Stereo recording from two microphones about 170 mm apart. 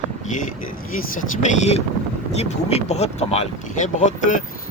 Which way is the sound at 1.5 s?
40° left (ahead or behind).